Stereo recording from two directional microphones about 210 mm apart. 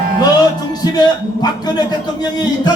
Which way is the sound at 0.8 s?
20° left (ahead or behind).